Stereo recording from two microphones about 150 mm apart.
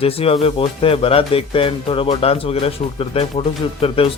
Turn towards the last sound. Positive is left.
turn(degrees=40)  # may be behind; listen again after turning